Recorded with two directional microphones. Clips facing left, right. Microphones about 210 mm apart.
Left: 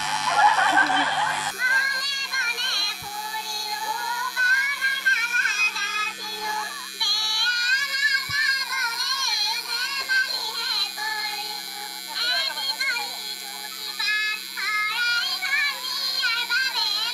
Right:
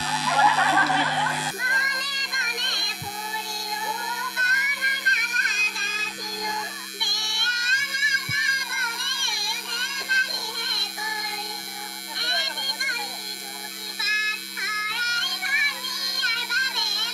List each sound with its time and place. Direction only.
0.0 s a sound: 35° right (ahead or behind)
1.5 s music: 20° right (ahead or behind)
4.4 s music: 20° right (ahead or behind)
7.0 s child singing: 25° right (ahead or behind)
12.2 s a sound: 25° right (ahead or behind)
14.0 s child singing: 25° right (ahead or behind)